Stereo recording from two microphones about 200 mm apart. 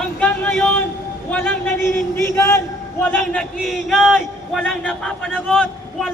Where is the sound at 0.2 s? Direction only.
10° left (ahead or behind).